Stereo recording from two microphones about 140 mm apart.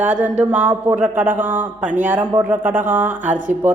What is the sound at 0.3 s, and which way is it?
A woman's voice, 10° right (ahead or behind).